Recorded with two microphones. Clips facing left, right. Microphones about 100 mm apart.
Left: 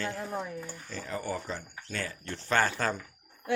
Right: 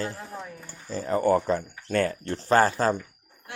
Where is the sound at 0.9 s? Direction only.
35° right (ahead or behind).